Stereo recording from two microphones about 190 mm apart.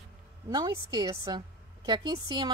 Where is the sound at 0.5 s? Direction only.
20° right (ahead or behind).